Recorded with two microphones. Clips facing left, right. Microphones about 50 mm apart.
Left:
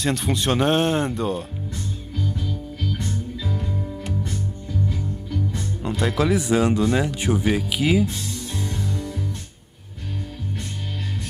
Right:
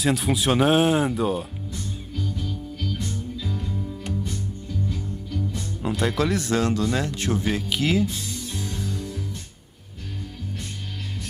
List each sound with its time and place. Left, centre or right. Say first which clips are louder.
0.0 s speech: right 1 dB; centre
5.8 s speech: left 1 dB; centre
8.5 s music: left 4 dB; left